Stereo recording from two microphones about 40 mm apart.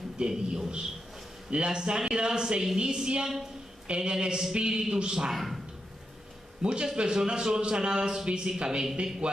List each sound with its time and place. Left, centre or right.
0.3 s a woman's voice: centre
5.3 s speech: centre
6.6 s a woman's voice: right